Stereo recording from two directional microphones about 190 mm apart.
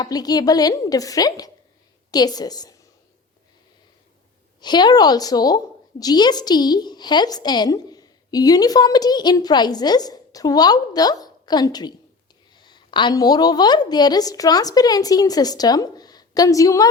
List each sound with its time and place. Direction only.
0.0 s a woman's voice: 20° left (ahead or behind)
4.6 s a woman's voice: 20° left (ahead or behind)